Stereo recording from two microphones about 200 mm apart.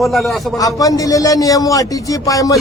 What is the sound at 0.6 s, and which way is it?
A man's voice, 15° left (ahead or behind).